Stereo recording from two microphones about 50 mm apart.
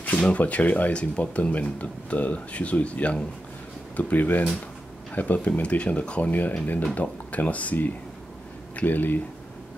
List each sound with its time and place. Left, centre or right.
0.0 s speech: left